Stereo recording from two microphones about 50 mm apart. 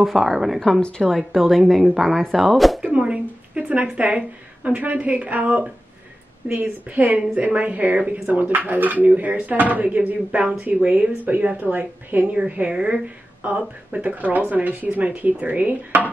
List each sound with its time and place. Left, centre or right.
0.0 s speech: centre
0.7 s speech: centre
1.1 s speech: centre
2.8 s a sound: right
4.6 s a woman's voice: right
12.4 s a woman's voice: right
13.4 s speech: right